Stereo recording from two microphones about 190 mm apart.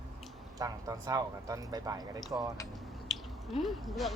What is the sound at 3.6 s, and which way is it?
Speech, centre (ahead or behind).